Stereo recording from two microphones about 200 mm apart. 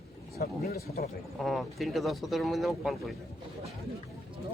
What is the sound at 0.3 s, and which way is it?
Speech, 50° left (ahead or behind).